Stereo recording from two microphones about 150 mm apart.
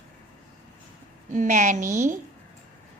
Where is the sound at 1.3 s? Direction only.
55° right (ahead or behind).